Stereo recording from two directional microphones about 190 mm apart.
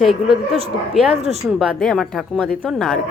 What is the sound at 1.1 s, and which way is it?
Speech, 35° right (ahead or behind).